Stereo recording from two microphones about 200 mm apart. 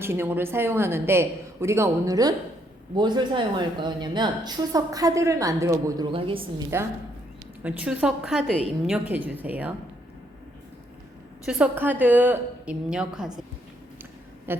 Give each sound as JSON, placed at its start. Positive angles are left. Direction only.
{"t": 0.0, "sound": "a woman's voice", "side_deg": -10}
{"t": 6.7, "sound": "a woman's voice", "side_deg": -10}
{"t": 11.4, "sound": "a woman's voice", "side_deg": -5}
{"t": 14.5, "sound": "a sound", "side_deg": -10}